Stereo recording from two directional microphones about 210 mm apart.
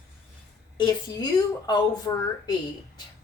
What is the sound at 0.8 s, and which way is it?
A woman's voice, 20° left (ahead or behind).